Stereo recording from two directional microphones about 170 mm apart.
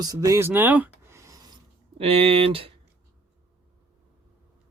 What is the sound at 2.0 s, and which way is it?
Speech, 35° right (ahead or behind).